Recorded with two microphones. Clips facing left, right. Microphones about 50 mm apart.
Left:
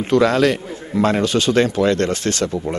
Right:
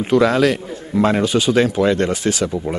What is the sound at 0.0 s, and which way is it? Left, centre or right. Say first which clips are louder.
A man's voice: even; centre.